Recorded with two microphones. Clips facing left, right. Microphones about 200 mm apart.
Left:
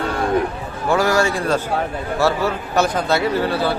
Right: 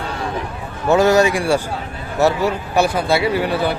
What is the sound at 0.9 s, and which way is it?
A man's voice, 20° right (ahead or behind).